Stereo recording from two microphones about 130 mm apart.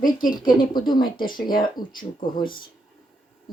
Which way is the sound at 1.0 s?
90° left.